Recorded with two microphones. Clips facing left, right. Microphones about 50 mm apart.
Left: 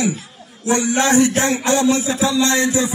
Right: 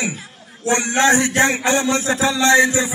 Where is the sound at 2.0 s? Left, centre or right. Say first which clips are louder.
Even; right.